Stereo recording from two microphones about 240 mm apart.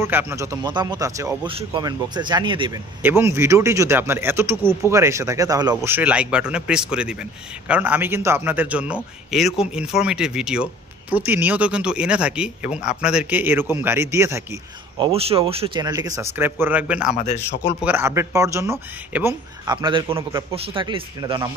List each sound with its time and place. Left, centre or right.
0.0 s speech: centre
3.0 s speech: centre
15.0 s speech: right; by 17.1 s centre
17.1 s speech: left
17.7 s speech: centre